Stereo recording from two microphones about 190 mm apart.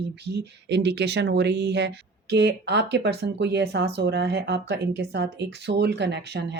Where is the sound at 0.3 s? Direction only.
65° right (ahead or behind).